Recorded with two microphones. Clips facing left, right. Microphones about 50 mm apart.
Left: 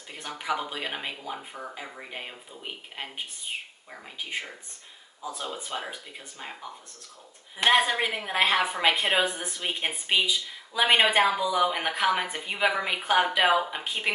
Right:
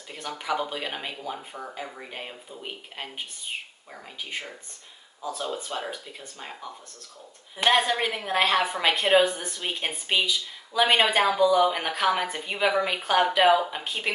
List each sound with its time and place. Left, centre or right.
0.4 s speech: centre
5.2 s speech: left
7.5 s speech: centre